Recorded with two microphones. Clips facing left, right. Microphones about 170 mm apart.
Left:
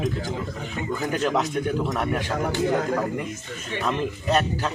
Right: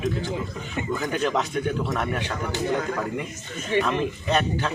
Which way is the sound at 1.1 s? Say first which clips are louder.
Left 2 dB; 45° left (ahead or behind).